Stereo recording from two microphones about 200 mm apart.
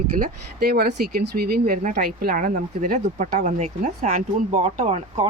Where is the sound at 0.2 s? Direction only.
50° right (ahead or behind).